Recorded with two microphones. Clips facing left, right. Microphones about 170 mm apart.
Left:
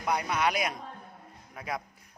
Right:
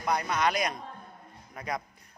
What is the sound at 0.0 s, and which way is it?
Speech, 10° left (ahead or behind).